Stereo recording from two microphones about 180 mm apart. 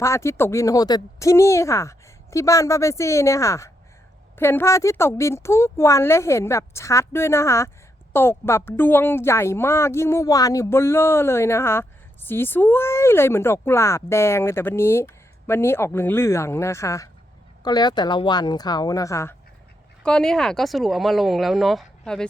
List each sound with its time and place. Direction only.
0.0 s a woman's voice: 15° left (ahead or behind)
20.0 s speech: 5° left (ahead or behind)